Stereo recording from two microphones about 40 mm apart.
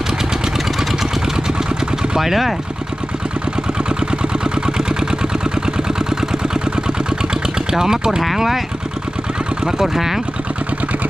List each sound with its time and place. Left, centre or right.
2.0 s a sound: centre
3.8 s vehicle: right
7.7 s speech: centre
9.6 s speech: centre